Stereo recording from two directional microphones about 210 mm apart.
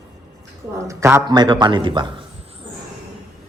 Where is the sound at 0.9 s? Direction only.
10° right (ahead or behind).